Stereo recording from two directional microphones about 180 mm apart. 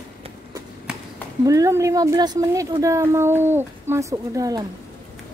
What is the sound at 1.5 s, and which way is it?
A woman's voice, 15° right (ahead or behind).